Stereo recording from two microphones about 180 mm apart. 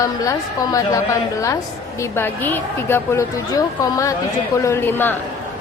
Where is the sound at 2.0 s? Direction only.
15° left (ahead or behind).